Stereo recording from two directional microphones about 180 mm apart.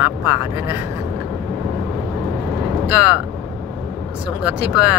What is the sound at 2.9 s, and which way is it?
Speech, 10° right (ahead or behind).